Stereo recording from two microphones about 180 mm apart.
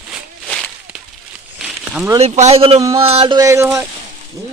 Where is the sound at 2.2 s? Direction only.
35° right (ahead or behind).